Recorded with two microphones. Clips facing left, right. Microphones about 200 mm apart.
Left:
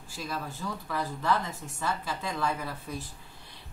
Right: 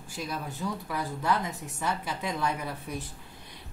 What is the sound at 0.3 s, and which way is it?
A woman's voice, 15° right (ahead or behind).